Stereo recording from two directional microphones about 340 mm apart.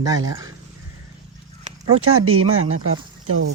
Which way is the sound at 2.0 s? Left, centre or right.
Right.